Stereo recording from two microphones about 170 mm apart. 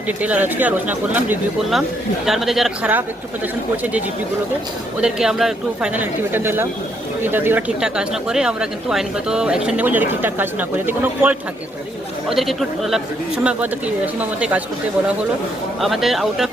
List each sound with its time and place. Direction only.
0.2 s speech: 10° right (ahead or behind)
4.9 s speech: 5° right (ahead or behind)
12.3 s speech: centre (ahead or behind)
15.8 s speech: centre (ahead or behind)